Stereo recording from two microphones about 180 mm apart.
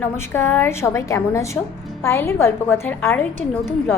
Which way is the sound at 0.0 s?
15° left (ahead or behind).